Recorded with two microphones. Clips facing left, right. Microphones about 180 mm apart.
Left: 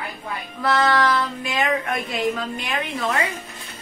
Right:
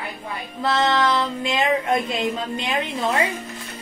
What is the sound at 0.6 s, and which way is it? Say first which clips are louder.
Child singing: left 1 dB; 25° right (ahead or behind).